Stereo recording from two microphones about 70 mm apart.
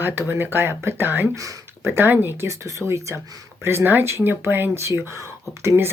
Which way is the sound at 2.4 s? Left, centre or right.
Right.